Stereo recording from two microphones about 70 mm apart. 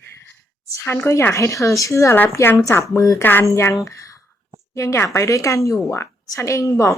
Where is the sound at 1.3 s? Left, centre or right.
Left.